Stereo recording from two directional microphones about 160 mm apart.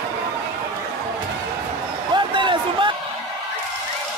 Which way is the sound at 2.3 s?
30° right (ahead or behind).